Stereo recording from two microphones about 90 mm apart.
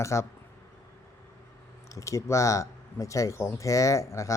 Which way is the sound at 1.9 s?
35° left (ahead or behind).